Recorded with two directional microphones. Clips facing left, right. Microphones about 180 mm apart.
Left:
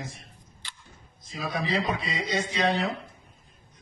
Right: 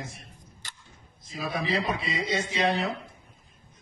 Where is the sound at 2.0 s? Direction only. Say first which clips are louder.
Even; centre (ahead or behind).